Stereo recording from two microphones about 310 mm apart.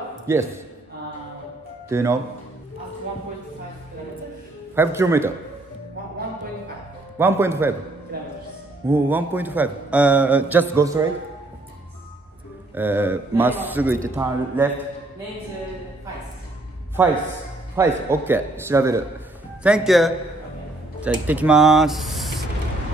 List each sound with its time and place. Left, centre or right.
0.3 s a man's voice: centre
1.9 s a man's voice: centre
4.7 s a man's voice: centre
7.2 s a man's voice: centre
8.1 s music: right
8.8 s a man's voice: centre
12.7 s a man's voice: centre
17.7 s a man's voice: centre